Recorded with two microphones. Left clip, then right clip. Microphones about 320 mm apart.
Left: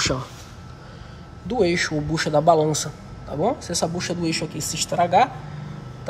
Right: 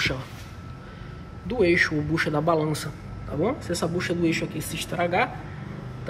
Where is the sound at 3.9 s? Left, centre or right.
Centre.